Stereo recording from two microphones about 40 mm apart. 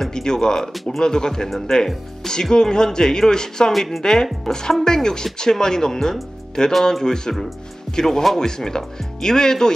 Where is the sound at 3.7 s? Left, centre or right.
Centre.